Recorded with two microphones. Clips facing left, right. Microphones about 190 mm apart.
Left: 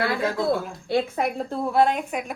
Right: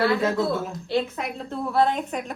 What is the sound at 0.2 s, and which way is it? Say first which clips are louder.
Speech: even; centre (ahead or behind).